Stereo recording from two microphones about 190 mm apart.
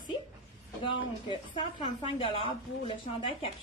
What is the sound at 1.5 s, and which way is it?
Speech, 30° left (ahead or behind).